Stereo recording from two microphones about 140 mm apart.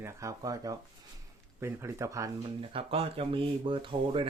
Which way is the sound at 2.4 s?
40° right (ahead or behind).